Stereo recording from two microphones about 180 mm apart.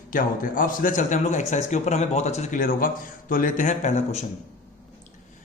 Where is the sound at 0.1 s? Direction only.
50° left (ahead or behind).